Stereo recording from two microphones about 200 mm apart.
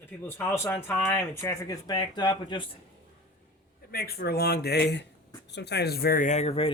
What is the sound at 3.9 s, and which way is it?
Speech, 50° left (ahead or behind).